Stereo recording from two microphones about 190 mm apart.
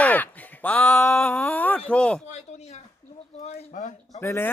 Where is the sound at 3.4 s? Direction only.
40° left (ahead or behind).